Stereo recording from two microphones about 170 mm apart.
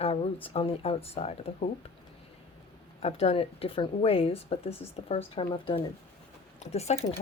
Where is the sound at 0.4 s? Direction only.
35° left (ahead or behind).